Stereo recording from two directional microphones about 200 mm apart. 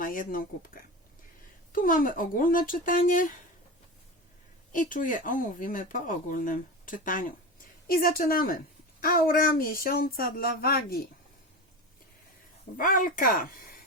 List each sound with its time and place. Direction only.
0.0 s speech: 45° left (ahead or behind)
4.7 s speech: 40° left (ahead or behind)
12.7 s speech: 45° left (ahead or behind)